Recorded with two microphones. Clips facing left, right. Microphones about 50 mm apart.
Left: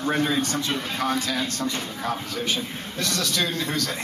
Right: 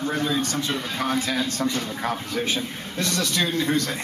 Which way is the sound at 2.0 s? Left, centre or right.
Right.